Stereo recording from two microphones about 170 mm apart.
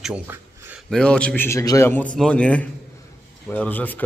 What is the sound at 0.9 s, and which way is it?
Speech, 5° left (ahead or behind).